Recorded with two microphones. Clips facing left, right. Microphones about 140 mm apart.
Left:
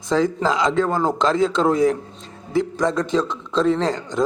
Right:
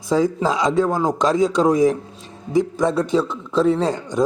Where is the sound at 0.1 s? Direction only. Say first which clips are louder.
Right 1 dB; 10° right (ahead or behind).